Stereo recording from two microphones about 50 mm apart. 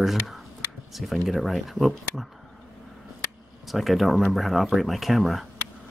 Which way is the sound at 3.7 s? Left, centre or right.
Centre.